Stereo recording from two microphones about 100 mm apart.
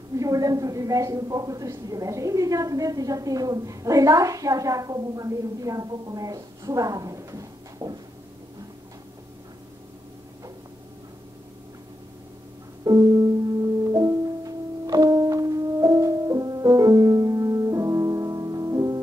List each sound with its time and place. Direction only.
0.2 s a woman's voice: 35° right (ahead or behind)
12.8 s music: 40° right (ahead or behind)